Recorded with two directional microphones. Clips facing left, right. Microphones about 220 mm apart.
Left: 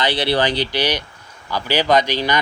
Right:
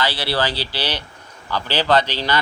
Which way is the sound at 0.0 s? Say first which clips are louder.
Left 4 dB; 20° left (ahead or behind).